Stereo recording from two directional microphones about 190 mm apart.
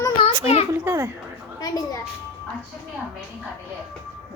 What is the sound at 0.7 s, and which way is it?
Speech, 15° right (ahead or behind).